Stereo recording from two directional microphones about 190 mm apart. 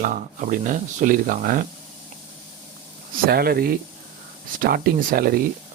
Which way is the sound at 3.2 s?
55° right (ahead or behind).